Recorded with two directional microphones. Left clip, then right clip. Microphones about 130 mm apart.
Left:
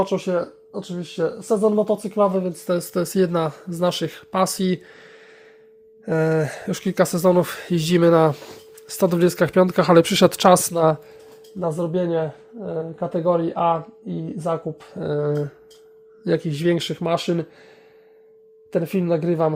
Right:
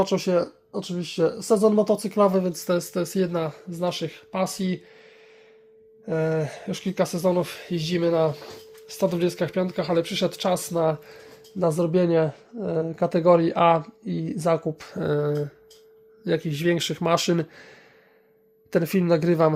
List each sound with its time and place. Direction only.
0.0 s speech: 5° right (ahead or behind)
0.3 s speech: 25° right (ahead or behind); by 2.6 s 5° right (ahead or behind)
2.6 s speech: 20° left (ahead or behind)
3.0 s speech: 35° left (ahead or behind)
6.1 s speech: 45° left (ahead or behind); by 8.4 s 85° left
8.9 s speech: 60° left (ahead or behind)
11.8 s speech: 20° right (ahead or behind)
12.5 s speech: 35° right (ahead or behind)
13.4 s speech: 20° right (ahead or behind)
14.9 s speech: centre (ahead or behind)
16.2 s speech: 25° left (ahead or behind)
16.9 s speech: centre (ahead or behind)
18.7 s speech: 10° right (ahead or behind)